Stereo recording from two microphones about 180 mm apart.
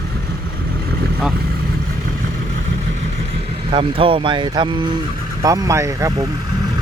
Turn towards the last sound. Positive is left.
turn(degrees=-15)  # may be behind; listen again after turning